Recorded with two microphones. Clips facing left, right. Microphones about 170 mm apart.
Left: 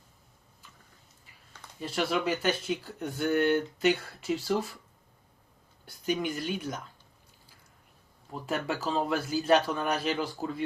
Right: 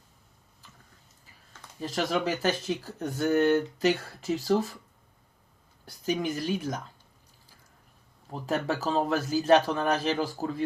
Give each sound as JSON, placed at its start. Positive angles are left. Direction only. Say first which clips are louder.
{"t": 1.8, "sound": "speech", "louder": "right 1 dB", "side_deg": -40}
{"t": 6.1, "sound": "speech", "louder": "right 2 dB", "side_deg": -40}
{"t": 8.3, "sound": "speech", "louder": "right 3 dB", "side_deg": -35}